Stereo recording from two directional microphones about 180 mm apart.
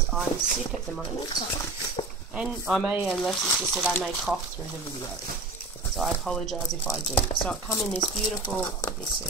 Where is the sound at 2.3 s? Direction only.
5° right (ahead or behind).